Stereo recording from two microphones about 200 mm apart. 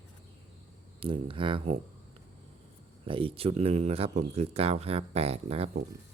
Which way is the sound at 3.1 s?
25° right (ahead or behind).